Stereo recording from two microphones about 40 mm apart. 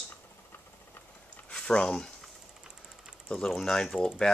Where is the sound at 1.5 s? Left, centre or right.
Left.